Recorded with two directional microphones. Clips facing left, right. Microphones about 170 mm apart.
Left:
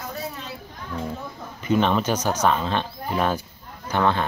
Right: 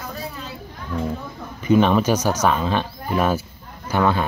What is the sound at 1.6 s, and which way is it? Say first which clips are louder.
Speech: right 5 dB; 10° right (ahead or behind).